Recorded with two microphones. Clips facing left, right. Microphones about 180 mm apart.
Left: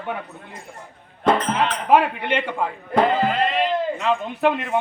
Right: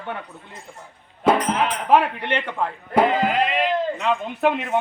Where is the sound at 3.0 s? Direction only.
10° right (ahead or behind).